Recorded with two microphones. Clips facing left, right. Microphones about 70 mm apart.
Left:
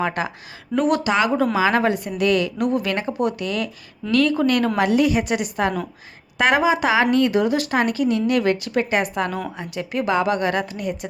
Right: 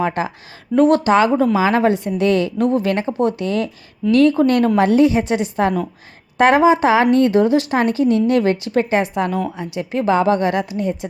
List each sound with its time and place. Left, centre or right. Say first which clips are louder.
0.0 s a woman's voice: right 3 dB; right